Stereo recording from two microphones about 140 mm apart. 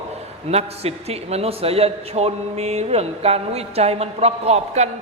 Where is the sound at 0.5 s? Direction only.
45° right (ahead or behind).